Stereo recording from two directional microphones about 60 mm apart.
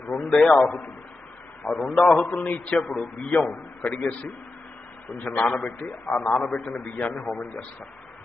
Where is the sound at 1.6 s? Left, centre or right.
Centre.